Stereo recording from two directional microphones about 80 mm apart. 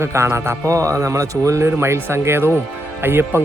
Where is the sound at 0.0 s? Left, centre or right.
Right.